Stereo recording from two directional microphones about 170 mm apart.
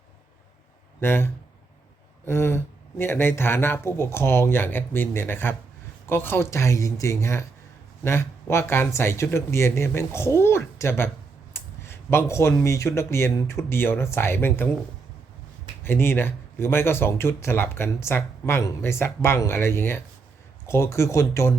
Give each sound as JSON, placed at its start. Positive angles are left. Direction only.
{"t": 1.0, "sound": "speech", "side_deg": 15}
{"t": 15.8, "sound": "speech", "side_deg": 15}